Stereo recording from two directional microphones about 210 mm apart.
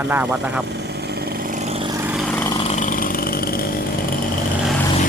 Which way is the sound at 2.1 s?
5° left (ahead or behind).